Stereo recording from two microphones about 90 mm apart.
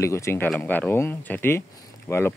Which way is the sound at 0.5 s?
20° left (ahead or behind).